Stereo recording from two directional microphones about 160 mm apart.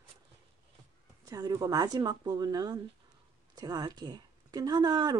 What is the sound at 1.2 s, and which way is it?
Speech, 25° right (ahead or behind).